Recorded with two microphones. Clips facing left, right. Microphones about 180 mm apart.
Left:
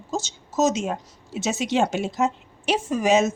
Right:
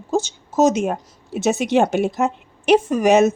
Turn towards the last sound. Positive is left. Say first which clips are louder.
# right 5 dB
turn(degrees=-60)  # may be behind; listen again after turning